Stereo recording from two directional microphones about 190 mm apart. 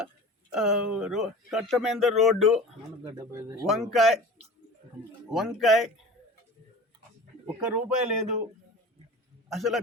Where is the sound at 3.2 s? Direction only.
15° right (ahead or behind).